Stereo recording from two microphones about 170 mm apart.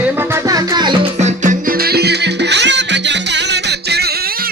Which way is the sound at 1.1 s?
45° right (ahead or behind).